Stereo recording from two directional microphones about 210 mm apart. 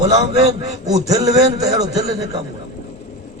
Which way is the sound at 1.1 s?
15° right (ahead or behind).